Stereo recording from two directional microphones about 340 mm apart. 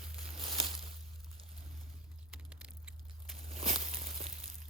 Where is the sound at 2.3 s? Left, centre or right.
Centre.